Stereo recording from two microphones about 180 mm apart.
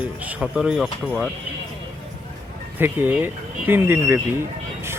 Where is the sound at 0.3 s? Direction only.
5° right (ahead or behind).